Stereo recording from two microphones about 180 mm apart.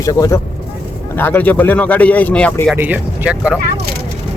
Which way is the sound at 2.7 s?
10° right (ahead or behind).